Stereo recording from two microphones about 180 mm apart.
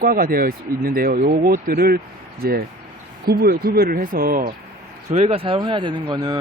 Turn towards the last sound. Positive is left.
turn(degrees=-20)  # may be behind; listen again after turning